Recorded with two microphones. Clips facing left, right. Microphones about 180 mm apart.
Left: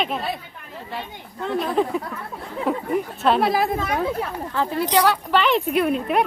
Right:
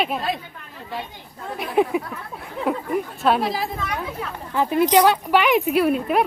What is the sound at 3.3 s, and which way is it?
Speech, 60° left (ahead or behind).